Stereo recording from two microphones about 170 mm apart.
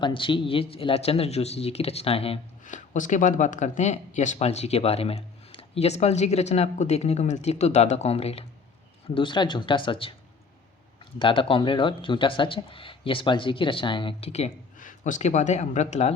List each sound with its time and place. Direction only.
0.0 s speech: 30° left (ahead or behind)
11.2 s speech: 30° left (ahead or behind)